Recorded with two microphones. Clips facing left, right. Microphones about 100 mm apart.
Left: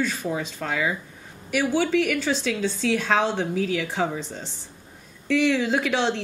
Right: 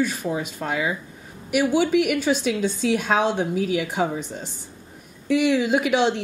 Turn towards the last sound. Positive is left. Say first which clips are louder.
# right 3 dB
turn(degrees=-15)  # may be behind; listen again after turning